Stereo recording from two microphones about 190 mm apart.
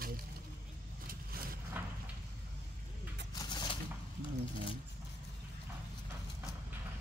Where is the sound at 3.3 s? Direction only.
20° left (ahead or behind).